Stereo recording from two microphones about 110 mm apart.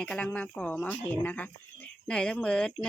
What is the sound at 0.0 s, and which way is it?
Speech, 10° left (ahead or behind).